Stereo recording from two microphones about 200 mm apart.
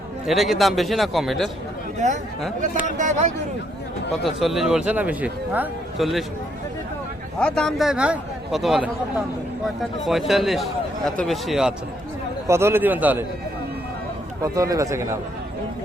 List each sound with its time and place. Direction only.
0.3 s speech: centre (ahead or behind)
2.0 s speech: 35° right (ahead or behind)
4.2 s speech: centre (ahead or behind)
7.3 s speech: 5° left (ahead or behind)
12.5 s a man's voice: 10° right (ahead or behind)
14.4 s a man's voice: 15° right (ahead or behind)